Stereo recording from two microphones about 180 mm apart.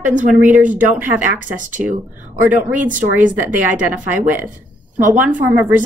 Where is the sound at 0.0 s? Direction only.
45° right (ahead or behind).